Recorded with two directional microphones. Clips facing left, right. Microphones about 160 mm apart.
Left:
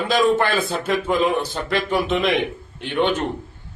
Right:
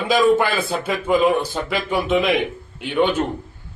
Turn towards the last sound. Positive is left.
turn(degrees=-5)  # may be behind; listen again after turning